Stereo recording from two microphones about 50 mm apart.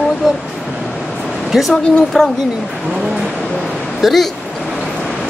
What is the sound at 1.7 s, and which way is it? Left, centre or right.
Speech, centre.